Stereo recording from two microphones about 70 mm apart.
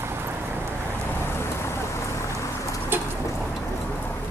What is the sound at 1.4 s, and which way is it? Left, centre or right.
Boat, left.